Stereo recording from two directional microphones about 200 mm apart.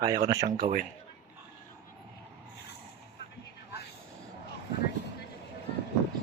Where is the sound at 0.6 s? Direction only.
45° right (ahead or behind).